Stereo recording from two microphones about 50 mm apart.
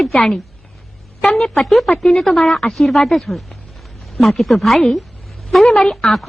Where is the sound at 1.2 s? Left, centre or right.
Centre.